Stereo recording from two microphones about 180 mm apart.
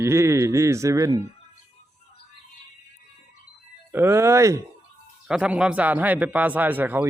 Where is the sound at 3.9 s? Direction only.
10° right (ahead or behind).